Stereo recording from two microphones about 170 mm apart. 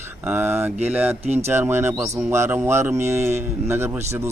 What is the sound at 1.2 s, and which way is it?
Speech, 40° right (ahead or behind).